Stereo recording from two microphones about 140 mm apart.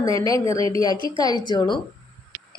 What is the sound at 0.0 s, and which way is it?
A woman's voice, 25° left (ahead or behind).